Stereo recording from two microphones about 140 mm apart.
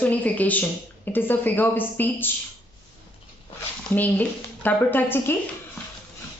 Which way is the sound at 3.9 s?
10° left (ahead or behind).